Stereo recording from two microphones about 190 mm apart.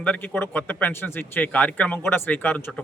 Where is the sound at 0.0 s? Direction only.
10° left (ahead or behind).